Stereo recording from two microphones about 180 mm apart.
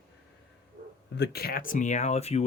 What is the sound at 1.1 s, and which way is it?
Speech, 65° left (ahead or behind).